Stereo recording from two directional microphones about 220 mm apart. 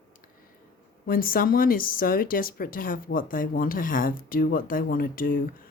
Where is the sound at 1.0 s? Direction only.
40° left (ahead or behind).